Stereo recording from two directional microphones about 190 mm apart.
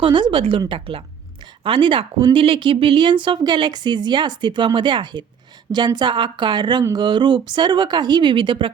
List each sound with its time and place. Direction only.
0.0 s speech: 25° right (ahead or behind)